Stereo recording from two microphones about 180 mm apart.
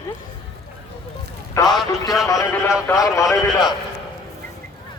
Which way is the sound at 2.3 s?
20° left (ahead or behind).